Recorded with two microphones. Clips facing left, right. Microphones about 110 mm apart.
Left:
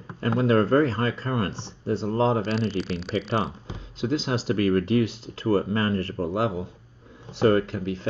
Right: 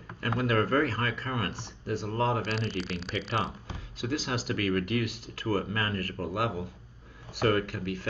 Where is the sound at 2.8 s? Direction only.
Centre (ahead or behind).